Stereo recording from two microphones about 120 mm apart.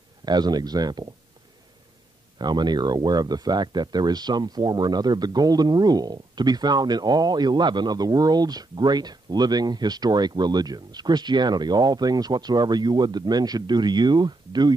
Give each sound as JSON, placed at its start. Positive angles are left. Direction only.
{"t": 0.2, "sound": "speech", "side_deg": -35}
{"t": 2.3, "sound": "speech", "side_deg": -35}